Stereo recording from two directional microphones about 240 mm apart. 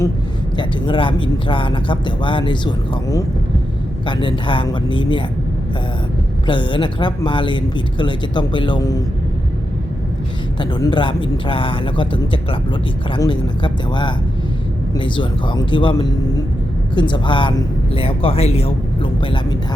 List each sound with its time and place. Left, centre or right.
0.5 s speech: centre
6.5 s speech: left
10.6 s speech: centre